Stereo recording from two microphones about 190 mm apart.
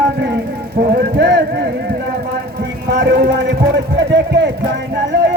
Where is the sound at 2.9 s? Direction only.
60° right (ahead or behind).